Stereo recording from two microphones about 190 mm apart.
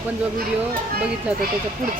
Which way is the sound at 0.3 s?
50° right (ahead or behind).